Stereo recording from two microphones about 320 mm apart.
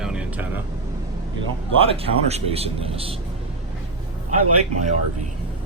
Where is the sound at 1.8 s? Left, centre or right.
Centre.